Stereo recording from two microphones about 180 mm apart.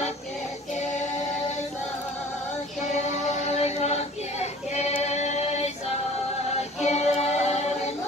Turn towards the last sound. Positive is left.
turn(degrees=35)  # may be behind; listen again after turning